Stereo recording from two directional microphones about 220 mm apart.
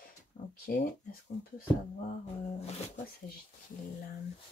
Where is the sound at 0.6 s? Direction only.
40° left (ahead or behind).